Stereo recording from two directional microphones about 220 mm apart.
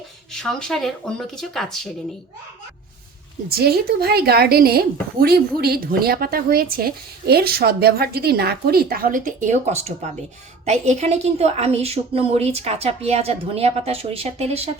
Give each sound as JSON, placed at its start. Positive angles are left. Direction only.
{"t": 0.3, "sound": "speech", "side_deg": 0}
{"t": 3.5, "sound": "a woman's voice", "side_deg": -45}